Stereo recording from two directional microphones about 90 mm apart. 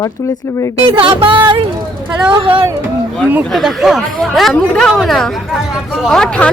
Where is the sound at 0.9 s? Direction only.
70° right (ahead or behind).